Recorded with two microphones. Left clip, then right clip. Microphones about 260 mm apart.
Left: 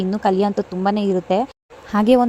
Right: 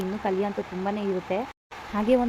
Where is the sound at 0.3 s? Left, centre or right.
Left.